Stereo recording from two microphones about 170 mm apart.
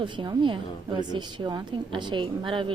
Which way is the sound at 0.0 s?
25° right (ahead or behind).